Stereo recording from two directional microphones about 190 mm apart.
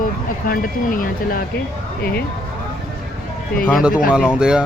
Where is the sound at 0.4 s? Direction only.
50° left (ahead or behind).